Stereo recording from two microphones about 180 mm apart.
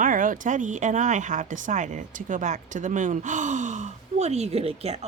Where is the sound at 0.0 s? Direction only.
50° right (ahead or behind).